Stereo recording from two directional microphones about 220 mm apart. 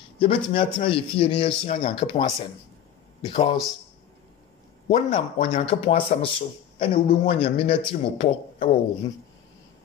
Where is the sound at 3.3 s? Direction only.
25° left (ahead or behind).